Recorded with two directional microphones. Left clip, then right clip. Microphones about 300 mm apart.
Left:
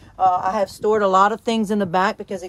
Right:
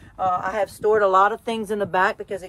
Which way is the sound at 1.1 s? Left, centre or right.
Left.